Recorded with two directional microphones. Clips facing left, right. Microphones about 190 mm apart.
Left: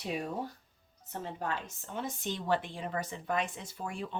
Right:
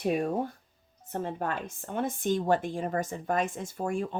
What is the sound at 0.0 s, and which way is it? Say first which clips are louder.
A woman's voice: right 8 dB; 55° right (ahead or behind).